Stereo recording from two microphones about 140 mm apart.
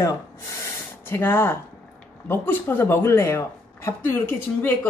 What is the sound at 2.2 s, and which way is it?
Speech, 15° left (ahead or behind).